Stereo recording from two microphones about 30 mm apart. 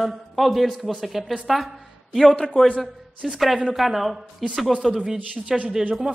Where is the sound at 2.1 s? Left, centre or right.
Centre.